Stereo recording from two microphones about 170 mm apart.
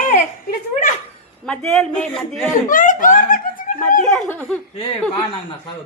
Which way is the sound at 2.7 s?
50° left (ahead or behind).